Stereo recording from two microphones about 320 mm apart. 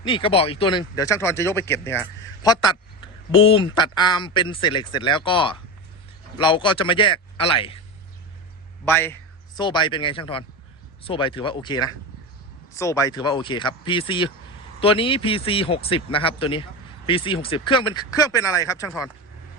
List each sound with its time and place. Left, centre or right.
0.0 s speech: centre
8.8 s a man's voice: centre